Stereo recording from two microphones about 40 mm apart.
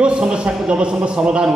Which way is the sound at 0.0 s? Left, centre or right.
Right.